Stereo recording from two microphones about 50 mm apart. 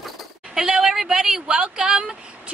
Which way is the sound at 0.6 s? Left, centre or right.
Centre.